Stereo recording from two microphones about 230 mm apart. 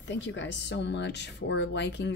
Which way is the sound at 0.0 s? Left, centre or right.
Left.